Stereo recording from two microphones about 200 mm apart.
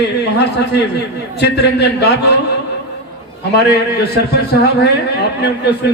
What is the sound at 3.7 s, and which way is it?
A man's voice, 55° left (ahead or behind).